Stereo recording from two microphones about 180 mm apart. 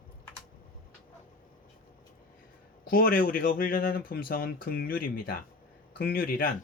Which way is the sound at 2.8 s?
55° left (ahead or behind).